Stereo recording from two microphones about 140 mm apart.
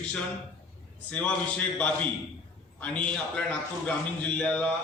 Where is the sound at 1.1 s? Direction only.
10° left (ahead or behind).